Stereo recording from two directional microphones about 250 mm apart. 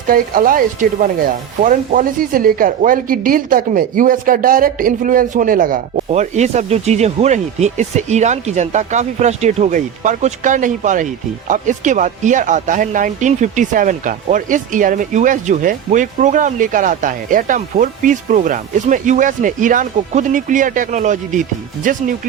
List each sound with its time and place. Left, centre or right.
0.1 s speech: right